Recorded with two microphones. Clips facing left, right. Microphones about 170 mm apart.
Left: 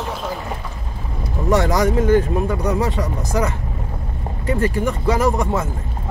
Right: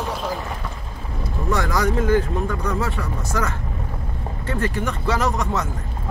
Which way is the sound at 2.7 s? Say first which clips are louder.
Left 4 dB; 15° left (ahead or behind).